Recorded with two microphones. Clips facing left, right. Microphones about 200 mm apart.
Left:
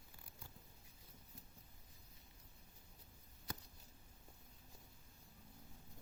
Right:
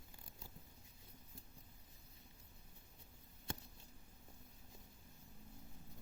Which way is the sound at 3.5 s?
25° right (ahead or behind).